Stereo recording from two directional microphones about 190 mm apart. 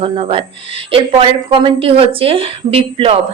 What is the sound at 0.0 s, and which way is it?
A woman's voice, 30° right (ahead or behind).